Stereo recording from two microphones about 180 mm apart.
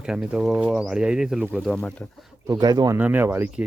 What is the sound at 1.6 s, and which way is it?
Speech, 5° left (ahead or behind).